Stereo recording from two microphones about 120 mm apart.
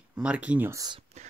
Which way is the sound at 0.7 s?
35° right (ahead or behind).